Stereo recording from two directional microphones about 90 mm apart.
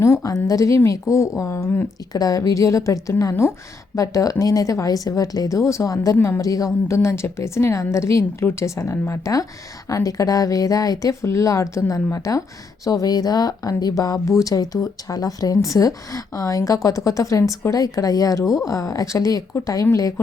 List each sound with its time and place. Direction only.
0.0 s a woman's voice: 35° left (ahead or behind)
2.1 s a woman's voice: 45° left (ahead or behind)